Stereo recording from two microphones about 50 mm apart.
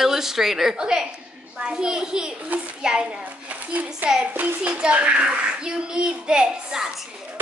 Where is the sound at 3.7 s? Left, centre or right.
Right; by 6.9 s centre.